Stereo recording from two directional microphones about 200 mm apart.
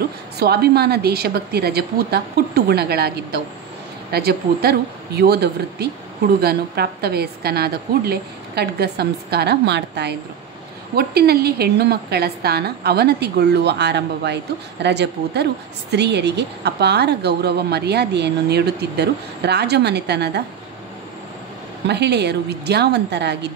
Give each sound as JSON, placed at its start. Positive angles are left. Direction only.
{"t": 0.0, "sound": "a woman's voice", "side_deg": -50}
{"t": 21.8, "sound": "a woman's voice", "side_deg": -55}